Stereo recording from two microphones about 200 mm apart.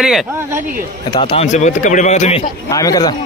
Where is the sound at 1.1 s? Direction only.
25° left (ahead or behind).